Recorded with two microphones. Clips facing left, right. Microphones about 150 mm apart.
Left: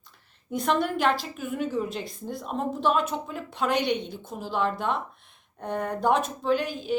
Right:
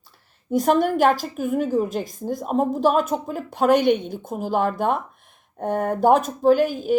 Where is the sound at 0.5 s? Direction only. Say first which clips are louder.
Right 7 dB; 45° right (ahead or behind).